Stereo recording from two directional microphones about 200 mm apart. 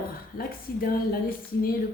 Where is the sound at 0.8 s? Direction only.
45° left (ahead or behind).